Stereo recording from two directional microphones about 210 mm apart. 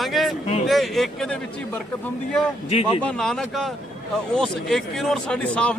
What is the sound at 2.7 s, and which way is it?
Speech, 30° left (ahead or behind).